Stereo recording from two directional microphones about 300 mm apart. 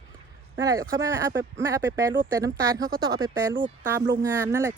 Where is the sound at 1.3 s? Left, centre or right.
Right.